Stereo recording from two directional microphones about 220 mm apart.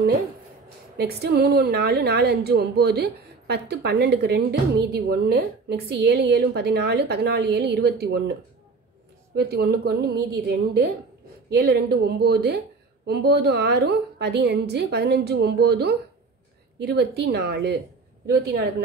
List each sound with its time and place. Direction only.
0.9 s a woman's voice: 45° right (ahead or behind)